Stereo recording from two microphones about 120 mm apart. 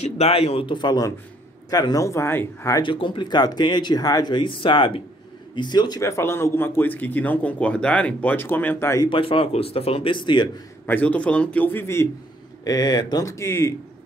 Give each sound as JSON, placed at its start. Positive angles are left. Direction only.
{"t": 0.0, "sound": "speech", "side_deg": 55}
{"t": 2.8, "sound": "a man's voice", "side_deg": 45}
{"t": 5.9, "sound": "speech", "side_deg": 25}
{"t": 9.0, "sound": "speech", "side_deg": 50}
{"t": 10.9, "sound": "speech", "side_deg": 10}
{"t": 12.6, "sound": "speech", "side_deg": 35}